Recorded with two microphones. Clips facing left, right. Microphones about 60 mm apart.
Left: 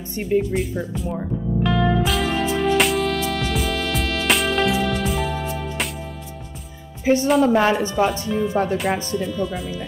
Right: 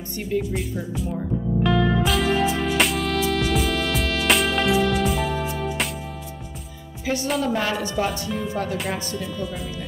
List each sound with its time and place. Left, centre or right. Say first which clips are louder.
0.3 s speech: left 5 dB; left
1.6 s music: left 1 dB; centre
7.1 s speech: left 7 dB; left
8.3 s speech: left 6 dB; centre